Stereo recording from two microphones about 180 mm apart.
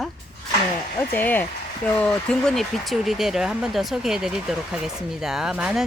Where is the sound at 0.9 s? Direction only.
10° left (ahead or behind).